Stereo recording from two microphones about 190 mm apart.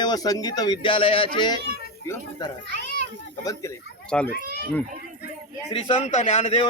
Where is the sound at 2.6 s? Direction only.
70° right (ahead or behind).